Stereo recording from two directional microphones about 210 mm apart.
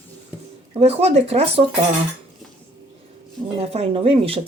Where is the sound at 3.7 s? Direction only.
30° right (ahead or behind).